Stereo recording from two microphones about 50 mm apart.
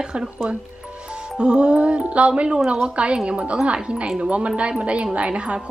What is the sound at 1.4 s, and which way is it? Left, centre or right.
A woman's voice, centre.